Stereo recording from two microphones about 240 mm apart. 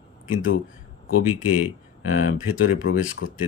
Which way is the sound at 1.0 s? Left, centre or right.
Left.